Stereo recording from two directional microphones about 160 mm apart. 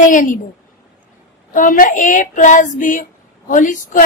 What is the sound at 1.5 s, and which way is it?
Female singing, 55° left (ahead or behind).